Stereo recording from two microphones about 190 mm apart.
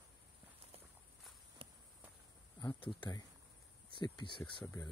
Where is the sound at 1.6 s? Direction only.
30° right (ahead or behind).